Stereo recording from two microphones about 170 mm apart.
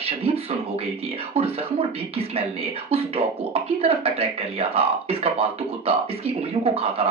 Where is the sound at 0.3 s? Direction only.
35° right (ahead or behind).